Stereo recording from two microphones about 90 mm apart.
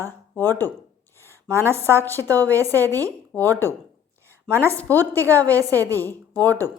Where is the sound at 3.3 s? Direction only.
25° left (ahead or behind).